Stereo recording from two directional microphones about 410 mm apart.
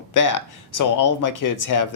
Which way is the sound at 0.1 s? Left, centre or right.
Left.